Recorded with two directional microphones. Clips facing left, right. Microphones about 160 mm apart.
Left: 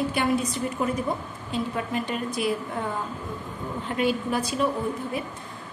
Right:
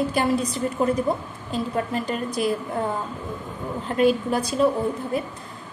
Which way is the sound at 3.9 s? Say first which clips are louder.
Right 5 dB; 40° right (ahead or behind).